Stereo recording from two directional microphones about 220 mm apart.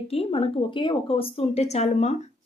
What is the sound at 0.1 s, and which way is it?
A woman's voice, 25° left (ahead or behind).